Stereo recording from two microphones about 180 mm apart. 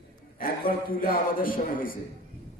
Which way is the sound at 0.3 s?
55° left (ahead or behind).